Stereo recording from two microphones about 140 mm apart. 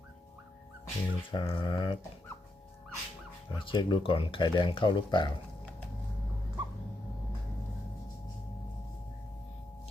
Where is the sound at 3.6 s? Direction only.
35° left (ahead or behind).